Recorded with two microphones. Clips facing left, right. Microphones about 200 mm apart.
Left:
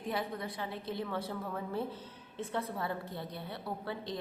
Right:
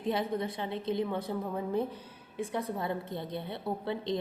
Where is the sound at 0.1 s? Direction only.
25° right (ahead or behind).